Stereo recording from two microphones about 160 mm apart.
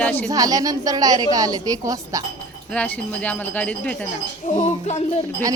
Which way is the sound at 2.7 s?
10° left (ahead or behind).